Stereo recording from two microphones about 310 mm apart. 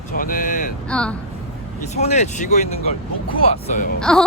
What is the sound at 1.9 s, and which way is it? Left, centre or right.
Speech, left.